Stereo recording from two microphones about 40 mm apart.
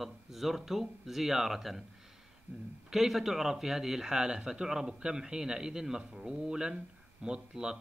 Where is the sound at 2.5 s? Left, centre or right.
Right.